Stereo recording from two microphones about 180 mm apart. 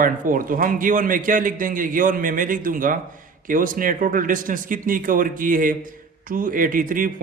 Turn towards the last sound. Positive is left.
turn(degrees=-50)  # may be behind; listen again after turning